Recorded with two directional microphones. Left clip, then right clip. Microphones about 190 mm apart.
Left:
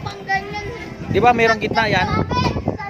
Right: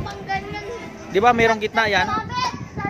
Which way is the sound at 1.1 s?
5° right (ahead or behind).